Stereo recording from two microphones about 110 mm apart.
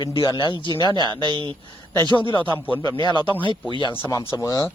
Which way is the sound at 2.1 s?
50° left (ahead or behind).